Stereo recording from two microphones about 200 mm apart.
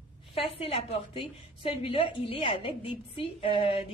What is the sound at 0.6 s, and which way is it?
A woman's voice, 30° left (ahead or behind).